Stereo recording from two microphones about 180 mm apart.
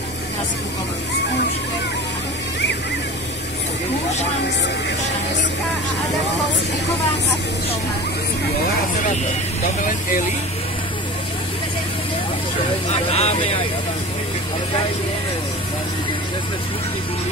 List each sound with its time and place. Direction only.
9.8 s speech: 50° left (ahead or behind)
12.9 s speech: 35° left (ahead or behind)